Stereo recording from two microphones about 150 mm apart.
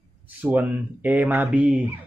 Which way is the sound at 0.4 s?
10° right (ahead or behind).